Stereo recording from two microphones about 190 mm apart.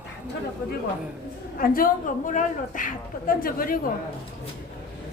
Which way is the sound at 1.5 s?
50° left (ahead or behind).